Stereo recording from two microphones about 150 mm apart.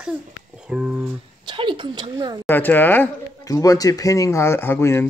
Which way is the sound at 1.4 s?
30° right (ahead or behind).